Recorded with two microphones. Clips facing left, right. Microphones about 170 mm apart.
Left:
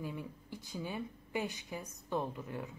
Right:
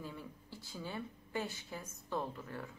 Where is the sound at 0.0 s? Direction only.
15° left (ahead or behind).